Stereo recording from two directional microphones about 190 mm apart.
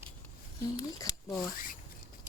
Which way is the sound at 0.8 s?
20° left (ahead or behind).